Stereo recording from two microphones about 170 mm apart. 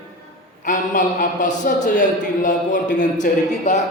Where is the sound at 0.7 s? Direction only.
50° left (ahead or behind).